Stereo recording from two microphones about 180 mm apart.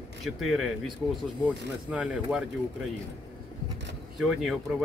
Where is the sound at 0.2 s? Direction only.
Centre (ahead or behind).